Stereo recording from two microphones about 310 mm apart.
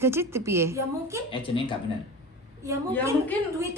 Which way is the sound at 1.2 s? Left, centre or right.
Centre.